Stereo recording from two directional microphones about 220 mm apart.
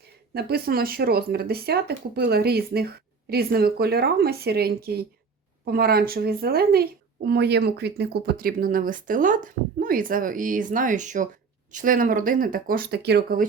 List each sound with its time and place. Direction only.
0.0 s speech: 45° right (ahead or behind)